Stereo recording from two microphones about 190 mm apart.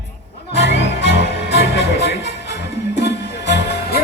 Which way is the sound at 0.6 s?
65° left (ahead or behind).